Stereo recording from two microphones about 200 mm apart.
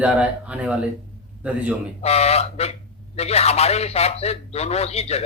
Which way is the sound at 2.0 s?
30° left (ahead or behind).